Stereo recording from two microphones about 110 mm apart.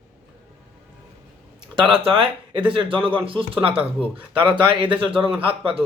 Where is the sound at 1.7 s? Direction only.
50° right (ahead or behind).